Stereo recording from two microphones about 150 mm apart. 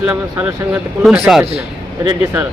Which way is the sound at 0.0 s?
10° right (ahead or behind).